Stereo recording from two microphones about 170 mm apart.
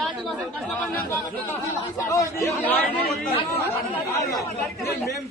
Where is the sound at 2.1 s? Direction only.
15° left (ahead or behind).